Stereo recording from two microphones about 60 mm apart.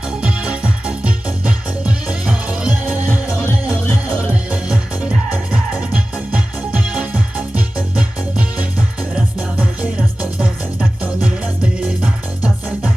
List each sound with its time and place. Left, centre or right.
0.2 s music: centre
4.3 s music: right
7.1 s music: right
9.6 s music: right
12.0 s music: right